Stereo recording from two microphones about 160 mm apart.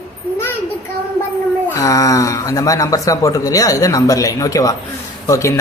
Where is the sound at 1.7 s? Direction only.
20° left (ahead or behind).